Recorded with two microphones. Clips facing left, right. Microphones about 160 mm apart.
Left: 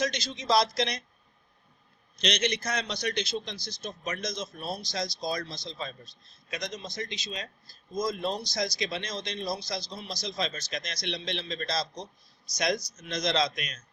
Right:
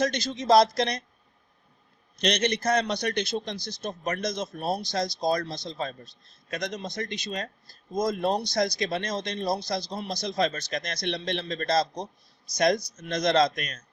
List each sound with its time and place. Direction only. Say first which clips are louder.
0.0 s speech: right 4 dB; 55° right (ahead or behind)
2.2 s a man's voice: right 4 dB; 55° right (ahead or behind)